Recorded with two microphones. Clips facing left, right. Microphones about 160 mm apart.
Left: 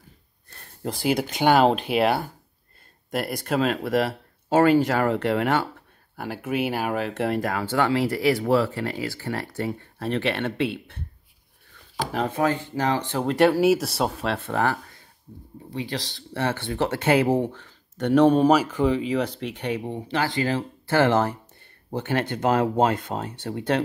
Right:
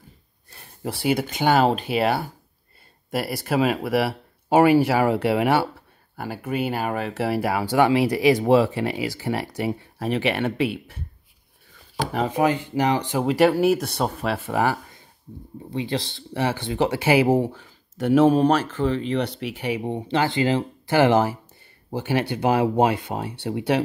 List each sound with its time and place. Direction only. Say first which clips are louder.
0.5 s speech: even; 5° right (ahead or behind)
12.1 s speech: right 2 dB; 5° right (ahead or behind)
15.7 s speech: right 4 dB; 25° right (ahead or behind)
16.3 s speech: right 2 dB; 15° right (ahead or behind)